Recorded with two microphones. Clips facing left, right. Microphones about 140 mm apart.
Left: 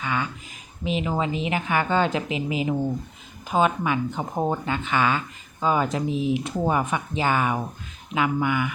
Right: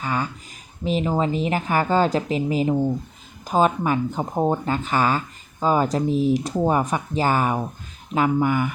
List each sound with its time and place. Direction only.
0.0 s a sound: 40° right (ahead or behind)
0.9 s speech: 40° right (ahead or behind)
4.4 s speech: 20° right (ahead or behind)
4.6 s speech: 40° right (ahead or behind)